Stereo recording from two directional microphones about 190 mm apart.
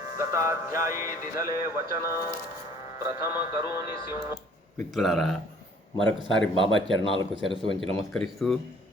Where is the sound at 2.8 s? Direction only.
20° right (ahead or behind).